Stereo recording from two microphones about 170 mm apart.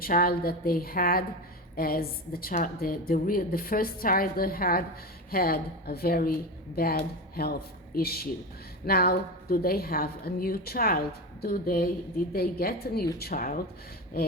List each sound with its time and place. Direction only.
0.0 s a woman's voice: 60° left (ahead or behind)